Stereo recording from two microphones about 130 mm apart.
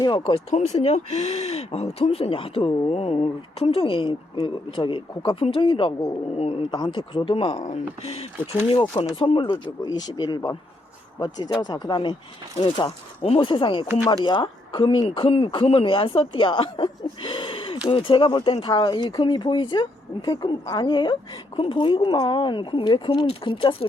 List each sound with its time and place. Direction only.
0.0 s speech: 35° left (ahead or behind)
0.7 s speech: 55° left (ahead or behind)
6.3 s speech: 50° left (ahead or behind)
6.7 s speech: 35° left (ahead or behind)
7.7 s speech: 55° left (ahead or behind)
9.1 s speech: 40° left (ahead or behind)
9.8 s speech: 30° left (ahead or behind)